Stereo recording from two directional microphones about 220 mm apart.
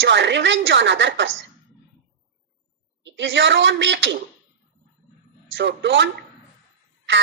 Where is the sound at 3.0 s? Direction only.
55° right (ahead or behind).